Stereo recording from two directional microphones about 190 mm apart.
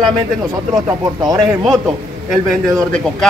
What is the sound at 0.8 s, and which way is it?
Speech, 20° right (ahead or behind).